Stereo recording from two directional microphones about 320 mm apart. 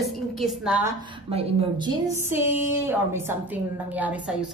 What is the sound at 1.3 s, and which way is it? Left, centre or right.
Speech, centre.